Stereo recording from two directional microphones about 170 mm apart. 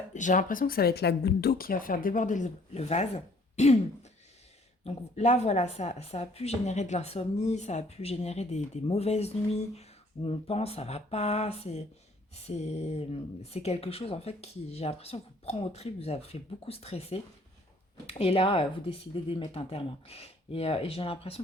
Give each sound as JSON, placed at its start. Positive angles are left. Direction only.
{"t": 0.1, "sound": "speech", "side_deg": 45}
{"t": 4.8, "sound": "speech", "side_deg": 40}